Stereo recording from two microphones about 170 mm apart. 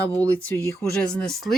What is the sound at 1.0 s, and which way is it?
Speech, 5° left (ahead or behind).